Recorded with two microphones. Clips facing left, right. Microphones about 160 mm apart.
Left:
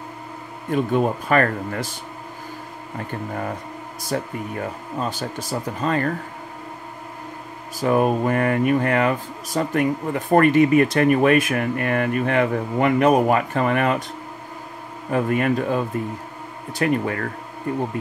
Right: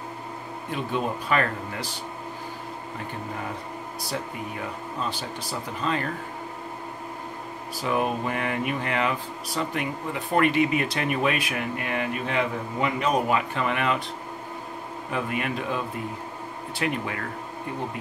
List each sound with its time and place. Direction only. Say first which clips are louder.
0.7 s speech: left 8 dB; 50° left (ahead or behind)
4.1 s speech: left 7 dB; 50° left (ahead or behind)
7.8 s speech: left 7 dB; 45° left (ahead or behind)
15.0 s speech: left 9 dB; 45° left (ahead or behind)